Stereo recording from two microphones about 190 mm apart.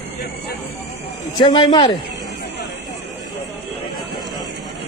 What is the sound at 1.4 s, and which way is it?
Speech, 25° left (ahead or behind).